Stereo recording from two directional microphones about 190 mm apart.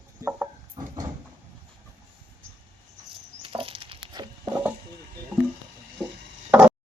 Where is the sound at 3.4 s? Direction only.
30° right (ahead or behind).